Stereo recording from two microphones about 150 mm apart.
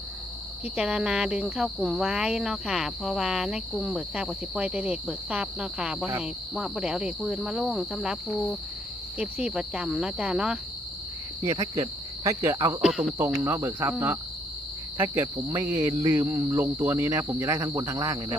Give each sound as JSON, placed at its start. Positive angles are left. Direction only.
{"t": 0.6, "sound": "speech", "side_deg": -5}
{"t": 11.5, "sound": "cricket", "side_deg": -25}
{"t": 12.8, "sound": "speech", "side_deg": -5}
{"t": 13.3, "sound": "speech", "side_deg": -20}
{"t": 14.9, "sound": "speech", "side_deg": -15}